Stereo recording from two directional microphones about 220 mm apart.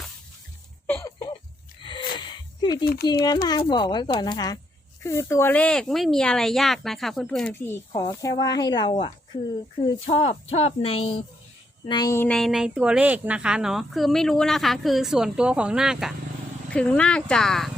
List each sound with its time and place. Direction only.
0.9 s a sound: 15° left (ahead or behind)
2.8 s speech: 45° left (ahead or behind)
3.4 s a woman's voice: 20° left (ahead or behind); by 17.7 s centre (ahead or behind)